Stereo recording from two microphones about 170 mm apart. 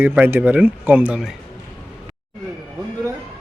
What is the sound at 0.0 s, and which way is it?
Speech, 10° right (ahead or behind).